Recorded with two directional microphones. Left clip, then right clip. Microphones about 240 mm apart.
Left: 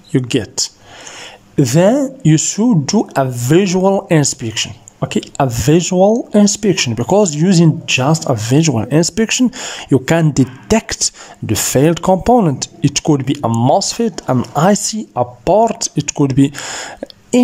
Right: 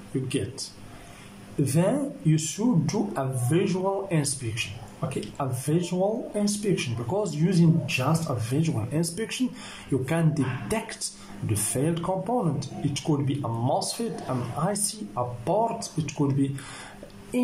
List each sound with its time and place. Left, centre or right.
1.6 s speech: left